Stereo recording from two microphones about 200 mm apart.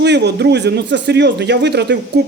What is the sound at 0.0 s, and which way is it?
Speech, 60° right (ahead or behind).